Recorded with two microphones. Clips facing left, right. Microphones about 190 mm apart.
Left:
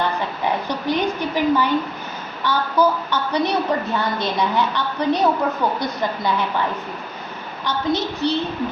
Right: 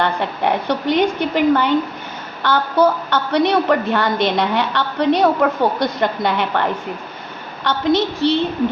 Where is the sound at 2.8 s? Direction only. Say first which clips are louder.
Right 3 dB; 85° right; by 6.7 s 70° right (ahead or behind).